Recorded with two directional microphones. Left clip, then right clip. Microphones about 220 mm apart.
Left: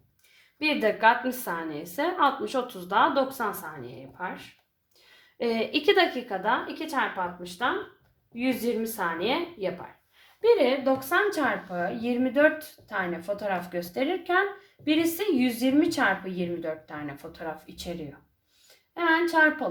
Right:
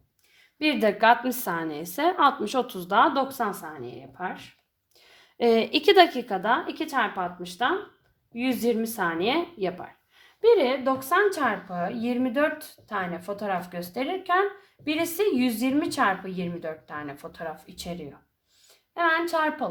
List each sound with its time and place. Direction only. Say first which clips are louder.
0.6 s a woman's voice: right 1 dB; 50° right (ahead or behind)
5.4 s a woman's voice: right 5 dB; 50° right (ahead or behind)
18.9 s a woman's voice: left 1 dB; 40° right (ahead or behind)